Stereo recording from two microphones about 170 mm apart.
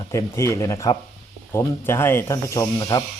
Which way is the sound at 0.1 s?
15° left (ahead or behind).